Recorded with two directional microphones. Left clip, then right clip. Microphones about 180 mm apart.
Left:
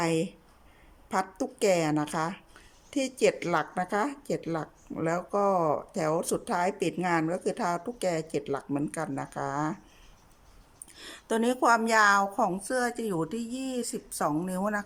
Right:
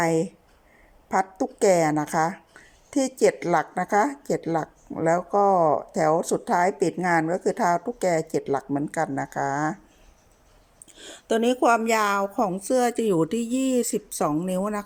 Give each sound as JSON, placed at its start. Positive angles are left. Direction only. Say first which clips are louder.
{"t": 0.0, "sound": "a woman's voice", "louder": "right 5 dB", "side_deg": 0}
{"t": 10.9, "sound": "speech", "louder": "right 5 dB", "side_deg": -5}